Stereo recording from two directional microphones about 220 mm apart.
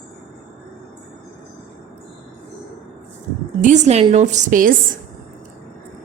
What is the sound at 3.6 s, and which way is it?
A woman's voice, 30° right (ahead or behind).